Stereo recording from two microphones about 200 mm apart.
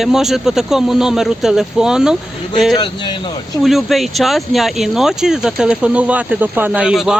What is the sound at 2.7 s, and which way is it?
Speech, 20° left (ahead or behind).